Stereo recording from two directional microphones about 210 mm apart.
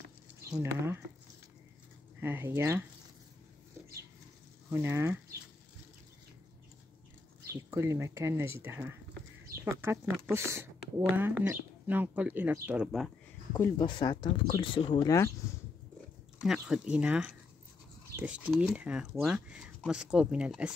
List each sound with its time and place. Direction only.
0.7 s speech: 10° right (ahead or behind)
2.1 s speech: 10° right (ahead or behind)
4.6 s speech: 10° right (ahead or behind)
7.7 s speech: 10° right (ahead or behind)
13.5 s speech: 20° left (ahead or behind)
16.3 s speech: 5° right (ahead or behind)